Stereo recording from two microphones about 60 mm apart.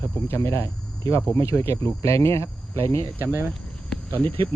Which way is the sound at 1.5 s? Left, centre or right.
Left.